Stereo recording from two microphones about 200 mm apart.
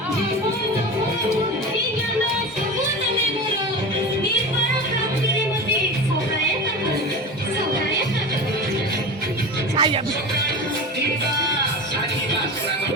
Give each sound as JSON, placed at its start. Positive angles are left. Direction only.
{"t": 9.7, "sound": "music", "side_deg": -25}